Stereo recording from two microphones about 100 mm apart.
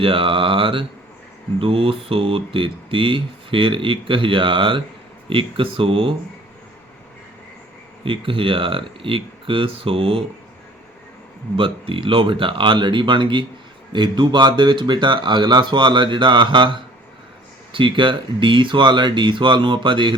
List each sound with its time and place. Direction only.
0.0 s speech: 65° right (ahead or behind)
8.0 s speech: 60° right (ahead or behind)
11.5 s speech: 60° right (ahead or behind)